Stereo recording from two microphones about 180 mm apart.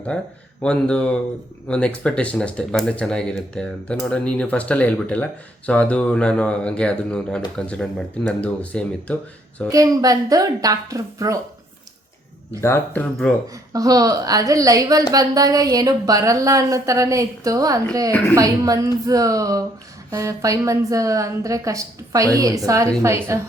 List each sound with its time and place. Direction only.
0.6 s speech: 5° left (ahead or behind)
9.6 s a woman's voice: 20° right (ahead or behind)
12.6 s speech: 10° left (ahead or behind)
13.5 s a woman's voice: 20° right (ahead or behind)